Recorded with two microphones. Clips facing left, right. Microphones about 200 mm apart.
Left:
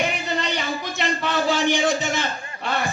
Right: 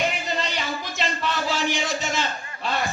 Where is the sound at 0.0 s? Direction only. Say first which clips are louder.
Left 1 dB; 60° left (ahead or behind).